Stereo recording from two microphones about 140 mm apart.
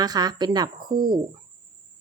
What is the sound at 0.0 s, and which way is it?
A woman's voice, 25° right (ahead or behind).